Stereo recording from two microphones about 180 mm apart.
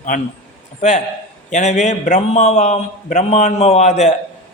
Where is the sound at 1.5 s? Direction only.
40° left (ahead or behind).